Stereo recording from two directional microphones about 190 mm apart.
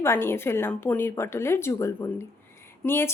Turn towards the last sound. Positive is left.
turn(degrees=15)  # may be behind; listen again after turning